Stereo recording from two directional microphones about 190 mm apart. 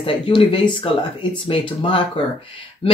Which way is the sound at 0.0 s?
30° left (ahead or behind).